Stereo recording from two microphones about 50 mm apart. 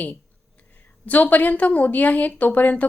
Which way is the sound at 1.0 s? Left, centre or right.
Left.